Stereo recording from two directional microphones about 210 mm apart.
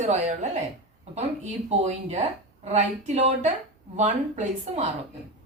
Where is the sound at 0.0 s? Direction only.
35° right (ahead or behind).